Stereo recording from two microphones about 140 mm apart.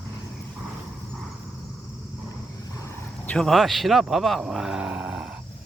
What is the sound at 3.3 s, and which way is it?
Speech, 5° left (ahead or behind).